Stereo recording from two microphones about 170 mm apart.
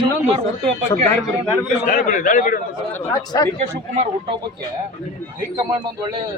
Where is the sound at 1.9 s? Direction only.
50° left (ahead or behind).